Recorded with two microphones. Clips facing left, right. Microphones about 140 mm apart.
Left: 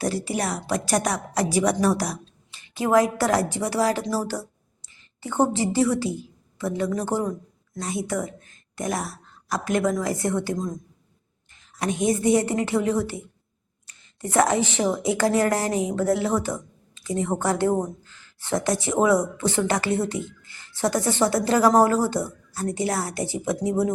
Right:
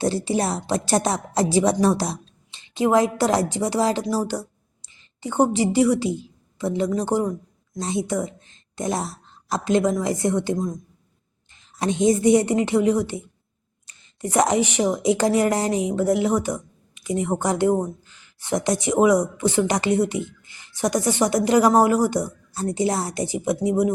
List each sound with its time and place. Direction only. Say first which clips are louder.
0.0 s a woman's voice: right 4 dB; 25° right (ahead or behind)
11.8 s a woman's voice: right 4 dB; 25° right (ahead or behind)